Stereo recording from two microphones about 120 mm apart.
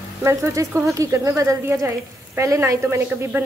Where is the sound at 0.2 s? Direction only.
25° right (ahead or behind).